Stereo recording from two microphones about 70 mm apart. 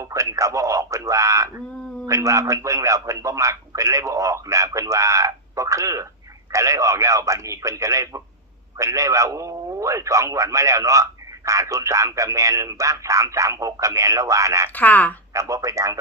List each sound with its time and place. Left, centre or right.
0.0 s a man's voice: right
14.8 s speech: left
15.3 s a man's voice: right